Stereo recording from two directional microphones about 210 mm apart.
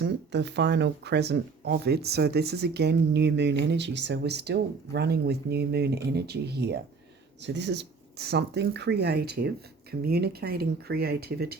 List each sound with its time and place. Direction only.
0.0 s speech: 55° right (ahead or behind)